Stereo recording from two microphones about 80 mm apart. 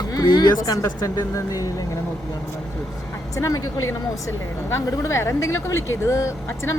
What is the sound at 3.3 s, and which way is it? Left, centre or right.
Speech, left.